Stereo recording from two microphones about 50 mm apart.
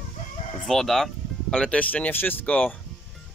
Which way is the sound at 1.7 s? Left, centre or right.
Left.